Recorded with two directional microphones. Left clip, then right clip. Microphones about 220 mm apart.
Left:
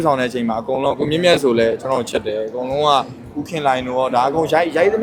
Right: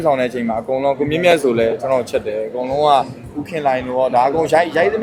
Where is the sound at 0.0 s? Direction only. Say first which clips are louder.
Right 1 dB; 10° left (ahead or behind).